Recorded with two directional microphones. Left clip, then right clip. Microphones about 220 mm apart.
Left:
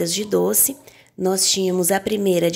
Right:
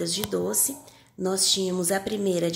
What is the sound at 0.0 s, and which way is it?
Speech, 35° left (ahead or behind).